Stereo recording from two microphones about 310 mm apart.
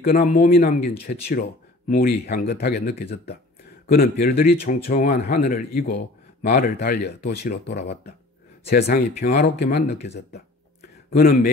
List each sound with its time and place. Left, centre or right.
0.0 s speech: left
11.1 s a man's voice: left